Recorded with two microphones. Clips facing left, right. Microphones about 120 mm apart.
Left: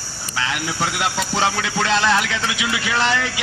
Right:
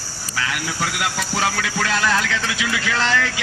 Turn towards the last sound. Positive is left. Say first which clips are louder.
# left 1 dB
turn(degrees=20)  # may be behind; listen again after turning